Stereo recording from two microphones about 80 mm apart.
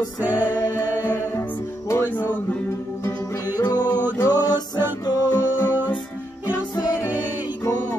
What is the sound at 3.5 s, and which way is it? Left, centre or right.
Music, left.